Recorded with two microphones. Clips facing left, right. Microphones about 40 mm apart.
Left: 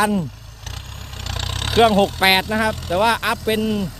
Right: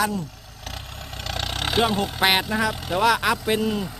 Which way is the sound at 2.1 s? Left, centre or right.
Centre.